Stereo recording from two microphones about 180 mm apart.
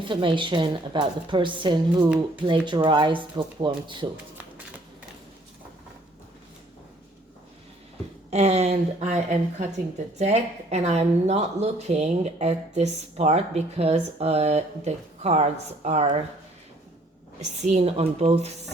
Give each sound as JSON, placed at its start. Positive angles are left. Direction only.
{"t": 0.0, "sound": "a woman's voice", "side_deg": -25}
{"t": 8.3, "sound": "a woman's voice", "side_deg": -35}
{"t": 17.4, "sound": "a woman's voice", "side_deg": -40}